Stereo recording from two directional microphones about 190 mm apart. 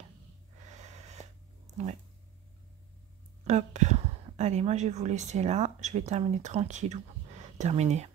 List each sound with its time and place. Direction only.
0.7 s snort: 40° right (ahead or behind)
3.4 s a woman's voice: 35° right (ahead or behind)